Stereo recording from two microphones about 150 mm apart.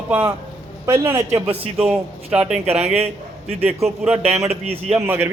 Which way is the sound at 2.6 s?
45° right (ahead or behind).